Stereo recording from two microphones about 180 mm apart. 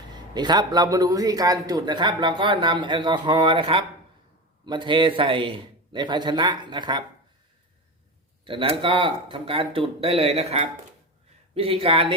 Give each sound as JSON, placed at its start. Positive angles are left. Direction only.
{"t": 0.3, "sound": "a man's voice", "side_deg": -25}
{"t": 8.4, "sound": "speech", "side_deg": -30}